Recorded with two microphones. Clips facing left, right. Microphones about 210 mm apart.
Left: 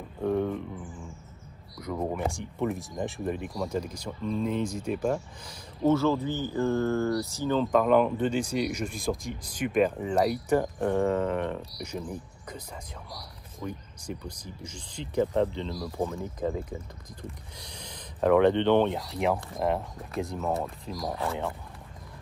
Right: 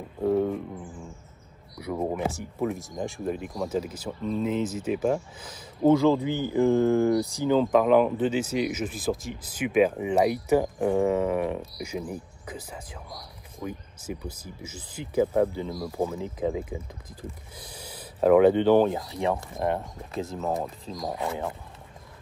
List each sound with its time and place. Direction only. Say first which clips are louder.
0.2 s a sound: right 3 dB; 5° right (ahead or behind)
1.8 s speech: right 2 dB; 10° right (ahead or behind)
20.9 s speech: right 1 dB; 20° right (ahead or behind)